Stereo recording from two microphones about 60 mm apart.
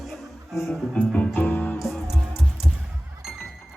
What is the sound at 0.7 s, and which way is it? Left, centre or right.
Music, centre.